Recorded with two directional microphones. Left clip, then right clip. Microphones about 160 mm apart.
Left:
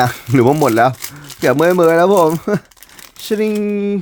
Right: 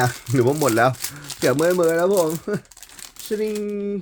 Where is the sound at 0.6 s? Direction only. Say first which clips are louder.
Left 6 dB; 35° left (ahead or behind).